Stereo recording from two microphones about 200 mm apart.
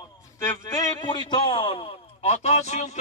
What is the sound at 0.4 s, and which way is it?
A man's voice, 15° left (ahead or behind).